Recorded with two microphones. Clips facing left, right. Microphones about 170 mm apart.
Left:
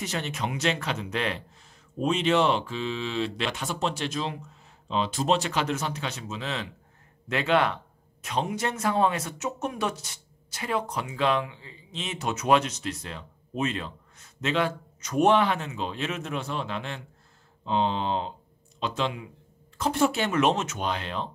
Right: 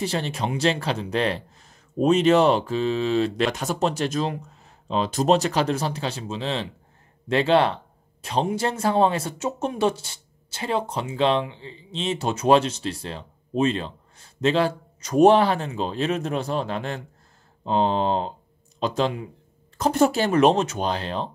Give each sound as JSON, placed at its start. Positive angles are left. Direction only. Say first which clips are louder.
{"t": 0.0, "sound": "a man's voice", "louder": "right 5 dB", "side_deg": -30}